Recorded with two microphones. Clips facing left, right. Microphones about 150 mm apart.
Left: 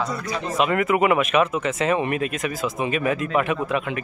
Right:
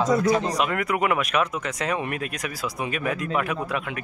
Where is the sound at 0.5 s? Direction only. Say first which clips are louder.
Left 4 dB; centre (ahead or behind).